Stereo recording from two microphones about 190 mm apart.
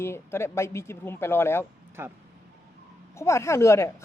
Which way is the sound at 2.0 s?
10° right (ahead or behind).